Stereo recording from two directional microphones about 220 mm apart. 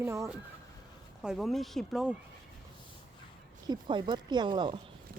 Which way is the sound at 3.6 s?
20° right (ahead or behind).